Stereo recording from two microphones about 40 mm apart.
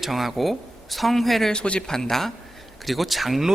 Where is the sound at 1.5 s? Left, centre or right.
Left.